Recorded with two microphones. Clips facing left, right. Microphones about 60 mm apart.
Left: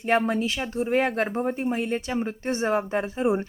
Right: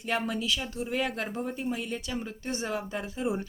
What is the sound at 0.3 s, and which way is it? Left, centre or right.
Speech, left.